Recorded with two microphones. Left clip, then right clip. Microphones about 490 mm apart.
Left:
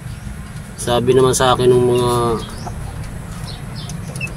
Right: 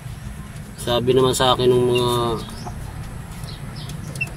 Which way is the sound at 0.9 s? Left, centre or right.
Right.